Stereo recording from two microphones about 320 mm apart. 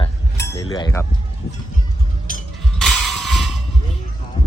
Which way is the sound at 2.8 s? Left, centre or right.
Centre.